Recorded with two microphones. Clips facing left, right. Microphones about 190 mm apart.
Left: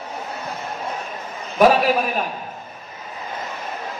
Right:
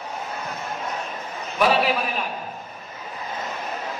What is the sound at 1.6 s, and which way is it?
Speech, 45° left (ahead or behind).